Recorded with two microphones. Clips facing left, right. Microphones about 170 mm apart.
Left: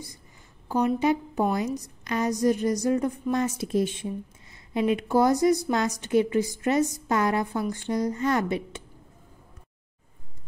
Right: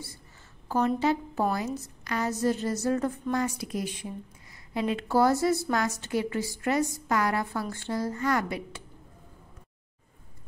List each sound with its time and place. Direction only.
0.7 s a woman's voice: 15° left (ahead or behind)